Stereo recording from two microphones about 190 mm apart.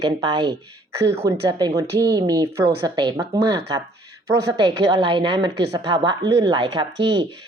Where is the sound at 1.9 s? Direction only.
60° right (ahead or behind).